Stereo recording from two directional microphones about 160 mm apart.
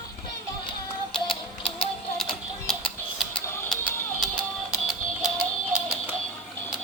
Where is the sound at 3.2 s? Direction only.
5° left (ahead or behind).